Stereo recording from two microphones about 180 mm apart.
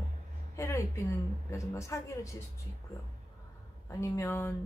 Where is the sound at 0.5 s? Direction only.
15° left (ahead or behind).